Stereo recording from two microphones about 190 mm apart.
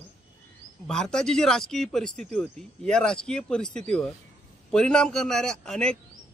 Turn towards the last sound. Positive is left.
turn(degrees=5)  # may be behind; listen again after turning